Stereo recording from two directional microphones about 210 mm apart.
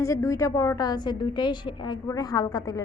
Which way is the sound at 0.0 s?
15° left (ahead or behind).